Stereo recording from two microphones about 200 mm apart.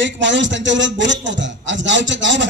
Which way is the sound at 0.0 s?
65° right (ahead or behind).